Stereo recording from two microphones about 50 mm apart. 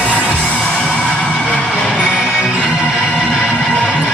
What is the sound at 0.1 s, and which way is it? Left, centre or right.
Music, left.